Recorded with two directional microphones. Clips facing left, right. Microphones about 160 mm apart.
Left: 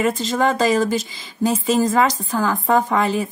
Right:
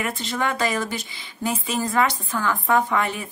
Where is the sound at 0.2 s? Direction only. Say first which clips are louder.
Left 6 dB; 40° left (ahead or behind).